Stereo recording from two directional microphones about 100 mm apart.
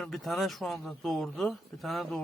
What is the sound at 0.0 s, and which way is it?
A man's voice, centre (ahead or behind).